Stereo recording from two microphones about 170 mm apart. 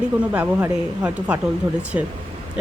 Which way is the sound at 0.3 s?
10° right (ahead or behind).